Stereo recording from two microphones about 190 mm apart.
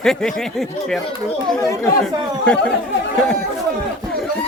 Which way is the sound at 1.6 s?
15° left (ahead or behind).